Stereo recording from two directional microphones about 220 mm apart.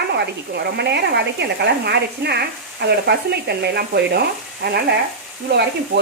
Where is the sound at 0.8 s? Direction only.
50° right (ahead or behind).